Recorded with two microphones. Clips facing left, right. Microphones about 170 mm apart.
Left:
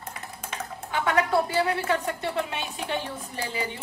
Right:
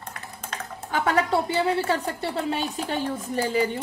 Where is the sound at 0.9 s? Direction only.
35° right (ahead or behind).